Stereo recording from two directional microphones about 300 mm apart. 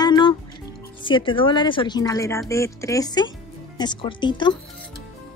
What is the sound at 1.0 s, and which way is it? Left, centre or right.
Speech, centre.